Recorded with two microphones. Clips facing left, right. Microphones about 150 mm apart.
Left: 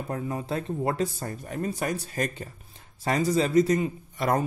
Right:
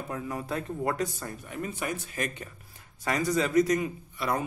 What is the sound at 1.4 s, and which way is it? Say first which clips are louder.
Speech: left 5 dB; 40° left (ahead or behind).